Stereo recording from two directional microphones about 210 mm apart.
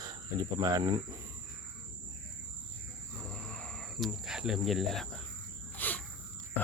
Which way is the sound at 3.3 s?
5° left (ahead or behind).